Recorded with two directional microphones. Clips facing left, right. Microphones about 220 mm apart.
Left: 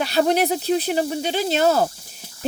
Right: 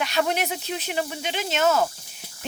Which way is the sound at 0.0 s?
35° left (ahead or behind).